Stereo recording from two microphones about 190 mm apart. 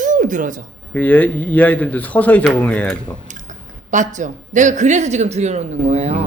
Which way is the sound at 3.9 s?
40° right (ahead or behind).